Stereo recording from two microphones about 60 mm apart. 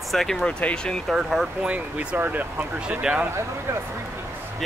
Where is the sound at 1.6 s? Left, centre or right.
Right.